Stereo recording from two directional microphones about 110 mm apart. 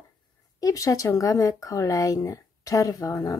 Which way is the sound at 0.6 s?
30° left (ahead or behind).